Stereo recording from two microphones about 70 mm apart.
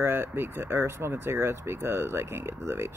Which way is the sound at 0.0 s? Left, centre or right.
Right.